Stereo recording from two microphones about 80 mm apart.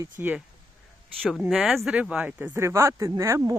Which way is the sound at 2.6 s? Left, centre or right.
Right.